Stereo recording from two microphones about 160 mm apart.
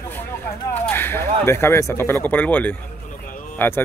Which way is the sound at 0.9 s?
15° left (ahead or behind).